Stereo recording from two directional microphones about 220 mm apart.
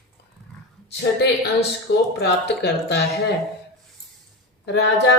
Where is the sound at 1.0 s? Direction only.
50° left (ahead or behind).